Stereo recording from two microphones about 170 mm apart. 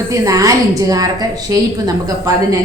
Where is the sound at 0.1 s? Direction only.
20° right (ahead or behind).